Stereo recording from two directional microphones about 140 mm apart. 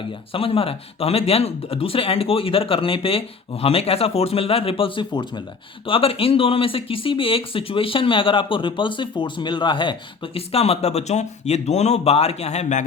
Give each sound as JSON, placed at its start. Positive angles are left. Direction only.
{"t": 0.0, "sound": "speech", "side_deg": 40}